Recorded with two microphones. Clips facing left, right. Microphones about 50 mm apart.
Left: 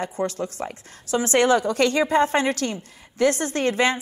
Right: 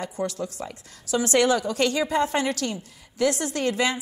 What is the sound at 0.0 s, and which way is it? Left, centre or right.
A woman's voice, left.